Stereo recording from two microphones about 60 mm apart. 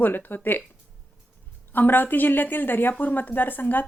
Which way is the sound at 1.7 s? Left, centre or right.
Left.